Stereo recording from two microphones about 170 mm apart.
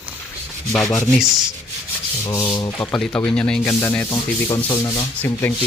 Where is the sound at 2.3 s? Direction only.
20° left (ahead or behind).